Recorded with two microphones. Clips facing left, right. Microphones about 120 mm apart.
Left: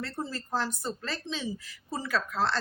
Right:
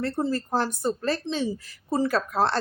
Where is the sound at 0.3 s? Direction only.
50° right (ahead or behind).